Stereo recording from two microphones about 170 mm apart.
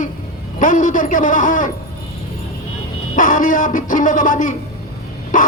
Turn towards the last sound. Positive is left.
turn(degrees=50)  # may be behind; listen again after turning